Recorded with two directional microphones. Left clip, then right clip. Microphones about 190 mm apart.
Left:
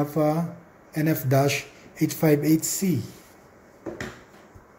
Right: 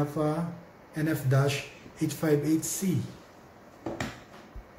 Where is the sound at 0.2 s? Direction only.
35° left (ahead or behind).